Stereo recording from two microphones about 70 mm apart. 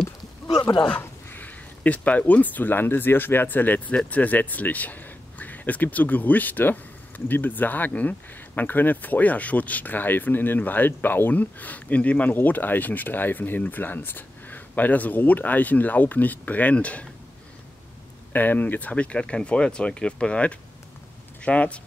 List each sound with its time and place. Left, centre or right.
0.0 s a sound: left
0.9 s speech: left
18.3 s speech: left